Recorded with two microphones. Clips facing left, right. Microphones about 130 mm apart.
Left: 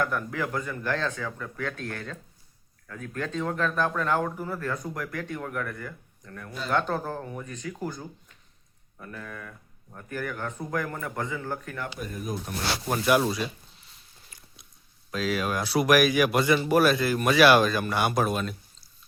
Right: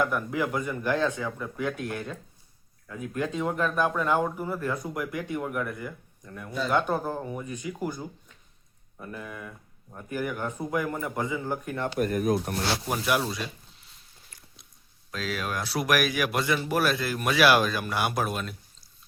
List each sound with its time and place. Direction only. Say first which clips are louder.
0.0 s speech: right 2 dB; 10° right (ahead or behind)
11.9 s speech: right 13 dB; 70° right (ahead or behind)
12.9 s speech: left 7 dB; centre (ahead or behind)
14.3 s biting: even; 5° left (ahead or behind)
15.1 s speech: left 4 dB; centre (ahead or behind)